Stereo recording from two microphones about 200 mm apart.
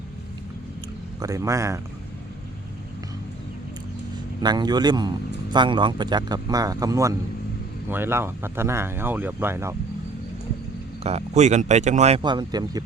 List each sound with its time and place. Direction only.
1.2 s speech: 15° right (ahead or behind)
4.4 s a man's voice: 20° right (ahead or behind)
11.0 s speech: 35° right (ahead or behind)